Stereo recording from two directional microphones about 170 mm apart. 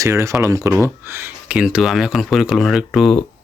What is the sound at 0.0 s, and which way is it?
Speech, 15° right (ahead or behind).